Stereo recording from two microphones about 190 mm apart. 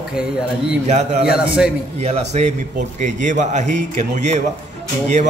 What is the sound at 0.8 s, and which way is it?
Speech, 35° right (ahead or behind).